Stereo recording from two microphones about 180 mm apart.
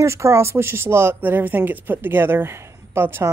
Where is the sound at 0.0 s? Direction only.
15° right (ahead or behind).